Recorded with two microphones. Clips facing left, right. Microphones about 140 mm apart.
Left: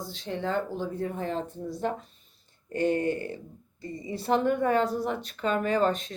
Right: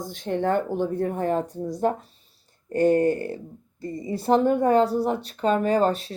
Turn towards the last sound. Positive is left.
turn(degrees=-35)  # may be behind; listen again after turning